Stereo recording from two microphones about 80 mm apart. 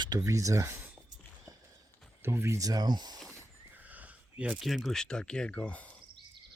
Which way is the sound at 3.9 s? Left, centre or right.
Centre.